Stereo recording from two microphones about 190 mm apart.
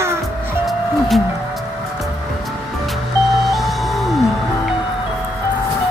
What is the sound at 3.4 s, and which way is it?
Music, centre (ahead or behind).